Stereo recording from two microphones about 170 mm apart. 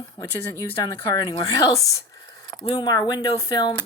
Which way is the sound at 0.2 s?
20° left (ahead or behind).